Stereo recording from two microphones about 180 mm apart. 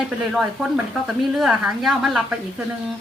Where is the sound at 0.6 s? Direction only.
Centre (ahead or behind).